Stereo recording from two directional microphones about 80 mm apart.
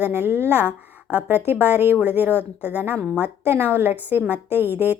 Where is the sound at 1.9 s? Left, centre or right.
Right.